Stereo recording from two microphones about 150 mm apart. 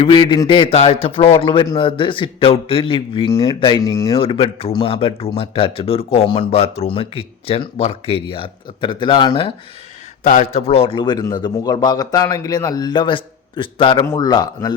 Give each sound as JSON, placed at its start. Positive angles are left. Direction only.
{"t": 0.0, "sound": "speech", "side_deg": 35}
{"t": 4.2, "sound": "speech", "side_deg": 35}
{"t": 10.2, "sound": "a man's voice", "side_deg": 55}